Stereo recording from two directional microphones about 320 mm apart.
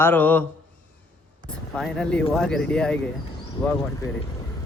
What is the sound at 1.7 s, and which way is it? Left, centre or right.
Speech, centre.